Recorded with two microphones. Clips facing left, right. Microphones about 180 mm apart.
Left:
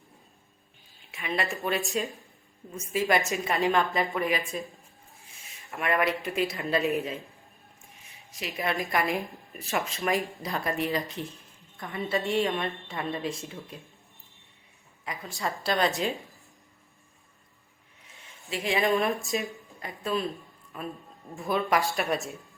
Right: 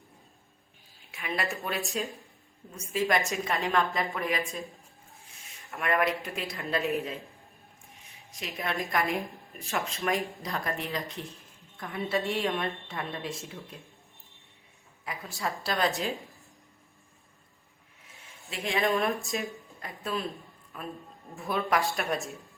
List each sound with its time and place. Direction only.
1.1 s a woman's voice: centre (ahead or behind)
5.6 s a woman's voice: centre (ahead or behind)
8.3 s a woman's voice: 5° left (ahead or behind)
15.0 s a woman's voice: 5° right (ahead or behind)
18.1 s a woman's voice: centre (ahead or behind)